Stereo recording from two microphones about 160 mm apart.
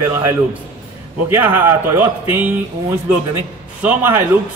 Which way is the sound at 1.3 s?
10° right (ahead or behind).